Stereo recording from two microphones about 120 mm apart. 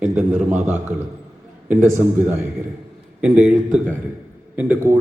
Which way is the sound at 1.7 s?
20° right (ahead or behind).